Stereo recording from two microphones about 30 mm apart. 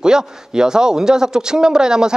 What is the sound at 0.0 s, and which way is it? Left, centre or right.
A man's voice, right.